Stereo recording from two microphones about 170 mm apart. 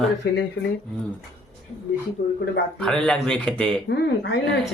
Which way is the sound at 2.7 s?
5° left (ahead or behind).